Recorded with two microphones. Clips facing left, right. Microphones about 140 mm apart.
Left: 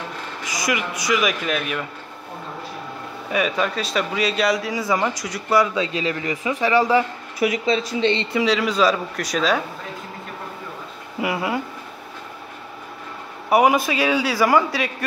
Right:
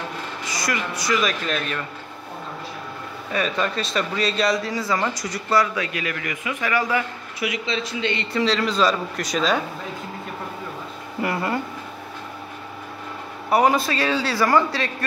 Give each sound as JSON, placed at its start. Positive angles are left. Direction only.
{"t": 0.5, "sound": "speech", "side_deg": 15}
{"t": 3.3, "sound": "speech", "side_deg": 10}
{"t": 5.6, "sound": "a man's voice", "side_deg": 25}
{"t": 7.3, "sound": "speech", "side_deg": 45}
{"t": 8.3, "sound": "speech", "side_deg": 10}
{"t": 11.1, "sound": "speech", "side_deg": 5}
{"t": 13.5, "sound": "speech", "side_deg": 15}